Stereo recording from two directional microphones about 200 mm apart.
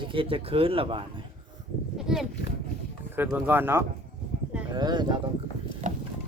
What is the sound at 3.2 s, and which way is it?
Speech, 10° right (ahead or behind).